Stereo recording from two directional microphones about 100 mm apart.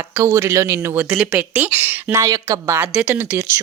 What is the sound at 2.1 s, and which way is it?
A woman's voice, 35° right (ahead or behind).